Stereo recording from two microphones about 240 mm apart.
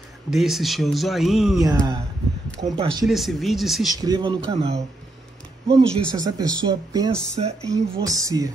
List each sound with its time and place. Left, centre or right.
0.3 s speech: centre
1.6 s speech: centre
3.1 s speech: centre
3.9 s speech: centre
5.8 s speech: centre